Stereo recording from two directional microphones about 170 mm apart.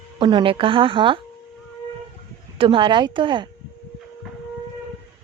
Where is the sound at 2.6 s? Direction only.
30° right (ahead or behind).